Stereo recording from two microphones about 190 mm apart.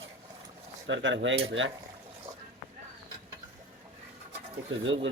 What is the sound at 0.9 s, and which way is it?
Cutlery, 75° right (ahead or behind).